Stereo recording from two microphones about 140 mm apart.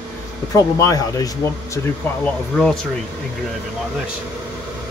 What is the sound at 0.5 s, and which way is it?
Speech, 25° left (ahead or behind).